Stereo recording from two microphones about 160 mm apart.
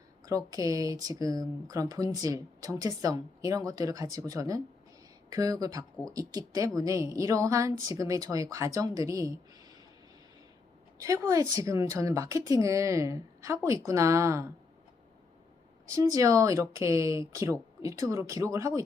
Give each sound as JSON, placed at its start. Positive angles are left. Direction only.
{"t": 0.3, "sound": "a woman's voice", "side_deg": -20}
{"t": 11.0, "sound": "a woman's voice", "side_deg": -20}
{"t": 15.9, "sound": "a woman's voice", "side_deg": -20}